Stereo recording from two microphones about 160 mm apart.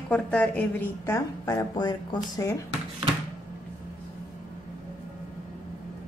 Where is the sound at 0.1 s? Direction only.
10° left (ahead or behind).